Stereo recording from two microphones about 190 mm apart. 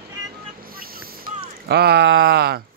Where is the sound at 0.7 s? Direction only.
50° right (ahead or behind).